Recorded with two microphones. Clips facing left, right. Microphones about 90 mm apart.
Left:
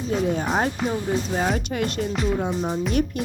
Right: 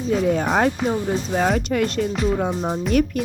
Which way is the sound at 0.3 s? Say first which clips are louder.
Right 4 dB; 50° right (ahead or behind).